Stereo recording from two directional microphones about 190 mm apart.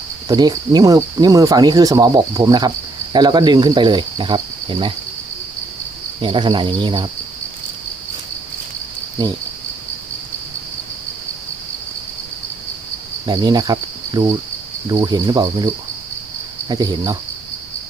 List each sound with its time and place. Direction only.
0.3 s speech: 20° right (ahead or behind)
6.2 s speech: 25° right (ahead or behind)
9.2 s speech: 20° right (ahead or behind)
13.2 s speech: 20° right (ahead or behind)